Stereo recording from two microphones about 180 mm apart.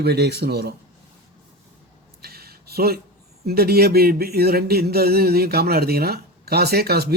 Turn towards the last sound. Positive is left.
turn(degrees=-60)  # may be behind; listen again after turning